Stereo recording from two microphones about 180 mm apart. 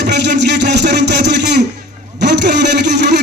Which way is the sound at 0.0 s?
70° right (ahead or behind).